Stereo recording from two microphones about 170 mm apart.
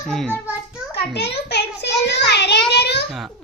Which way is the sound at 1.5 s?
85° left.